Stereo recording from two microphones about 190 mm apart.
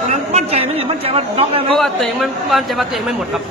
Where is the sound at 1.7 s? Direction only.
Centre (ahead or behind).